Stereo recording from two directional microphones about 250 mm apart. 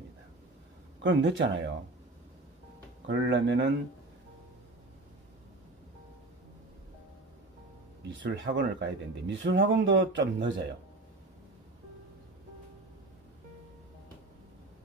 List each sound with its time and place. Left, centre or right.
1.0 s speech: right
3.1 s speech: right
8.0 s speech: right